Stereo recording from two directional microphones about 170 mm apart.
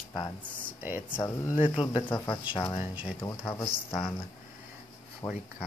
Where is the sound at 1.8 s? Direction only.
30° left (ahead or behind).